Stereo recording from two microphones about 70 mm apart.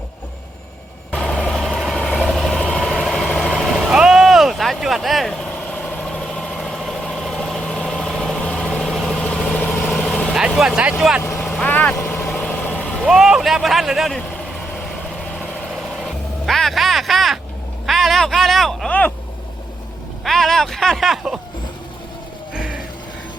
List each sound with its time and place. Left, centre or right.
1.1 s vehicle: centre
5.3 s vehicle: centre
6.3 s vehicle: centre
10.3 s vehicle: centre
11.3 s vehicle: centre
11.5 s vehicle: left
13.0 s vehicle: centre
15.1 s vehicle: centre
17.8 s a sound: centre
18.9 s a sound: left
20.2 s a sound: centre
22.5 s a sound: centre